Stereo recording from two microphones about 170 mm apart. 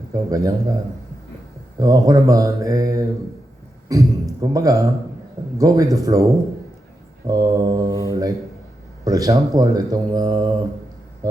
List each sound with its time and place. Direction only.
0.1 s speech: 20° right (ahead or behind)
1.8 s speech: 20° right (ahead or behind)